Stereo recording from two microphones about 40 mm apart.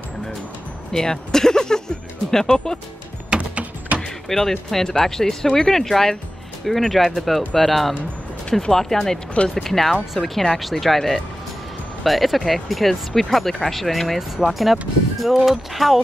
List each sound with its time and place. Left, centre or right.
0.9 s speech: centre
3.3 s a sound: right
4.3 s speech: centre
9.3 s speech: left
9.6 s speech: centre